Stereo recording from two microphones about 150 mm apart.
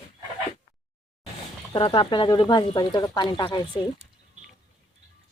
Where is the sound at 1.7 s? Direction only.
35° left (ahead or behind).